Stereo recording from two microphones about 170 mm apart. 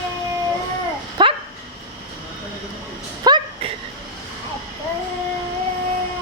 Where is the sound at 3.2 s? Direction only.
25° right (ahead or behind).